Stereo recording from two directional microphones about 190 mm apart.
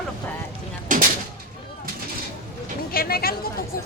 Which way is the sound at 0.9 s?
45° right (ahead or behind).